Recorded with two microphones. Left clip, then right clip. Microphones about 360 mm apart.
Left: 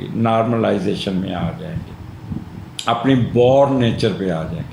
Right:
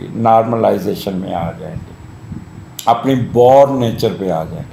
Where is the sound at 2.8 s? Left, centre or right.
Centre.